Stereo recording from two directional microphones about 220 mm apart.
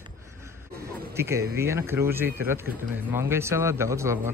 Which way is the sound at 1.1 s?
10° right (ahead or behind).